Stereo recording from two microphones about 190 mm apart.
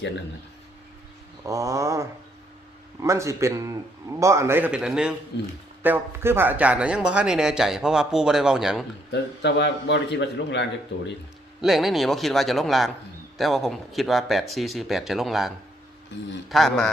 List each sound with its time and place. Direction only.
1.5 s a man's voice: 15° right (ahead or behind)
5.3 s speech: 70° left (ahead or behind)
5.8 s speech: 10° right (ahead or behind)
9.1 s a man's voice: 65° left (ahead or behind)
11.6 s speech: centre (ahead or behind)